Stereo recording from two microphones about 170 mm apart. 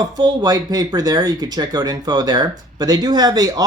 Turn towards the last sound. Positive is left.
turn(degrees=-20)  # may be behind; listen again after turning